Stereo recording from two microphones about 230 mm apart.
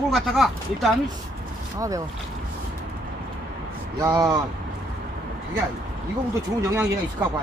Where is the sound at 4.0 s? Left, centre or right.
Centre.